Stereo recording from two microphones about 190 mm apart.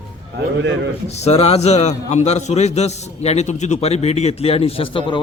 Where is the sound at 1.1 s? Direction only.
35° left (ahead or behind).